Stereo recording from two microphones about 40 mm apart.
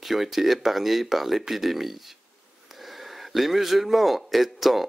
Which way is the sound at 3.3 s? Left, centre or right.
Centre.